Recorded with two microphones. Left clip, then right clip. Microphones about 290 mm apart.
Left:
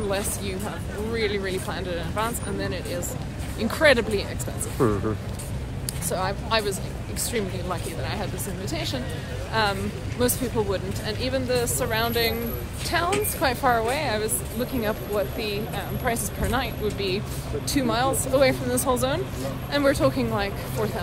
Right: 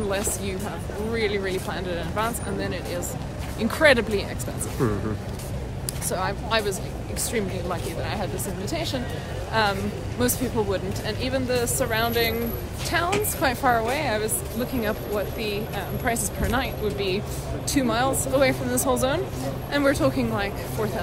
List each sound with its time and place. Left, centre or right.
1.1 s a woman's voice: centre
4.7 s speech: centre
6.0 s a woman's voice: centre